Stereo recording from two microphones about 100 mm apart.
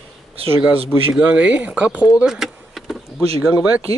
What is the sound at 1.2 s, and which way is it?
Speech, 15° right (ahead or behind).